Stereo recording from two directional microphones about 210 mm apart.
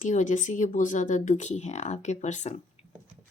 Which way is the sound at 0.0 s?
35° left (ahead or behind).